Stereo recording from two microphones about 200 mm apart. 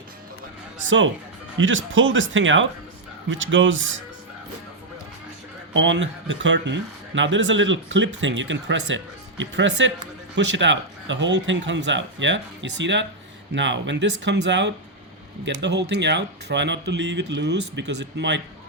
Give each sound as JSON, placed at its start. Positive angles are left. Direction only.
{"t": 0.9, "sound": "speech", "side_deg": -70}
{"t": 5.7, "sound": "speech", "side_deg": -65}